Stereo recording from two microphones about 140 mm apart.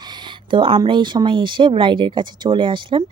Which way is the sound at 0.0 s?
35° right (ahead or behind).